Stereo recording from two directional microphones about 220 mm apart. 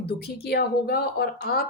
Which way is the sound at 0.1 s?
45° left (ahead or behind).